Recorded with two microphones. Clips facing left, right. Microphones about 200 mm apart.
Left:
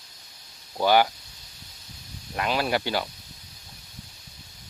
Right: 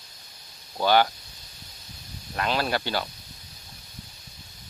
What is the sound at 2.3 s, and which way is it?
Speech, 15° left (ahead or behind).